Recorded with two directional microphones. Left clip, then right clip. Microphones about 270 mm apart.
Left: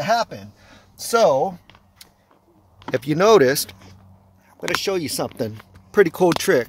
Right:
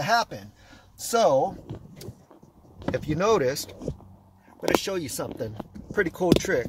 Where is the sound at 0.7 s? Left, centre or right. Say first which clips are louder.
Left 6 dB; left.